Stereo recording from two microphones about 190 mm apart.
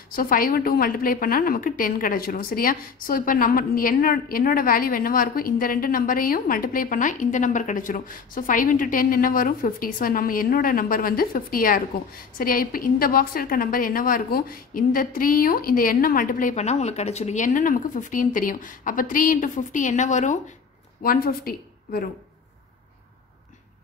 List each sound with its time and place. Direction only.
0.1 s a woman's voice: 50° left (ahead or behind)
21.0 s a woman's voice: 50° left (ahead or behind)